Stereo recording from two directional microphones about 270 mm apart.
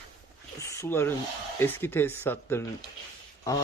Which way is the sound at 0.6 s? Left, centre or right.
Centre.